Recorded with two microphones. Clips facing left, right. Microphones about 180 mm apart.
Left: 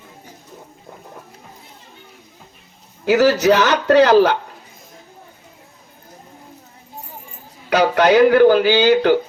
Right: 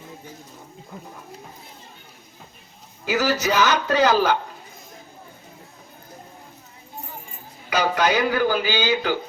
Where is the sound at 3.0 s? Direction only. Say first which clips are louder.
Left 9 dB; 65° left (ahead or behind).